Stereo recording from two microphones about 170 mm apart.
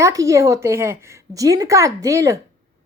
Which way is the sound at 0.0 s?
20° right (ahead or behind).